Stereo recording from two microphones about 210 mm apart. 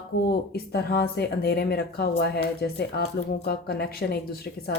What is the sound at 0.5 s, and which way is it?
Speech, 50° left (ahead or behind).